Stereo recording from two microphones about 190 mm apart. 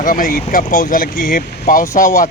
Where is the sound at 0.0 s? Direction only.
45° left (ahead or behind).